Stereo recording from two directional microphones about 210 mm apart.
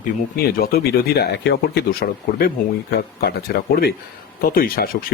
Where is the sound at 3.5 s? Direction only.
50° left (ahead or behind).